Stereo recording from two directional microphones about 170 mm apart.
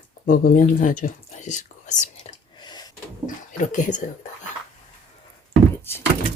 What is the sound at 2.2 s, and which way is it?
Whispering, 25° left (ahead or behind).